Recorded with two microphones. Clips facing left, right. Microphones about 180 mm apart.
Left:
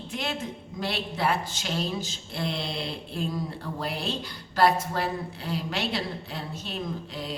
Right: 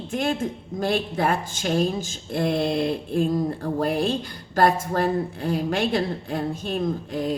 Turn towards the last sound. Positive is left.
turn(degrees=-50)  # may be behind; listen again after turning